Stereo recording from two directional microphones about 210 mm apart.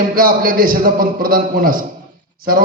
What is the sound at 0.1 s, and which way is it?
A man's voice, 45° right (ahead or behind).